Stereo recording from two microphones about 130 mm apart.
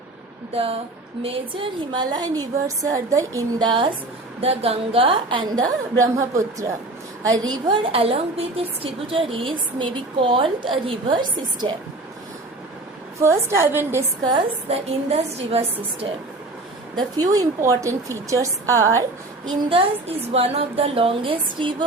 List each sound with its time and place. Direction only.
0.5 s a woman's voice: 50° right (ahead or behind); by 3.4 s 25° right (ahead or behind)
3.6 s a woman's voice: 40° right (ahead or behind)
6.0 s a woman's voice: 25° right (ahead or behind)
7.9 s a woman's voice: 50° right (ahead or behind)
13.1 s speech: 20° right (ahead or behind)
14.7 s a woman's voice: 50° right (ahead or behind)
16.9 s speech: 30° right (ahead or behind)
19.5 s a woman's voice: 50° right (ahead or behind)